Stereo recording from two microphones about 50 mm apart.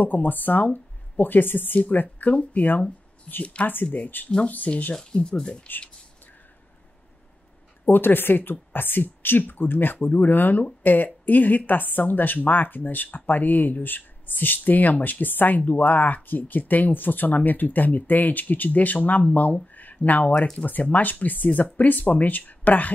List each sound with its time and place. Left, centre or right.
0.0 s speech: left
3.3 s speech: left
7.8 s speech: left